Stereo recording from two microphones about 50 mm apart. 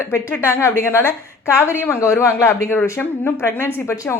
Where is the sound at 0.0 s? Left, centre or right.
Left.